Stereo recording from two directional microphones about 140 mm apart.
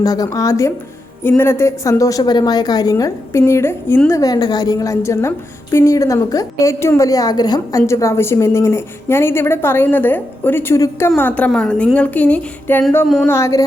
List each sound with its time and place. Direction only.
0.0 s a woman's voice: 25° left (ahead or behind)
11.2 s a sound: 10° left (ahead or behind)
13.2 s a woman's voice: 20° left (ahead or behind)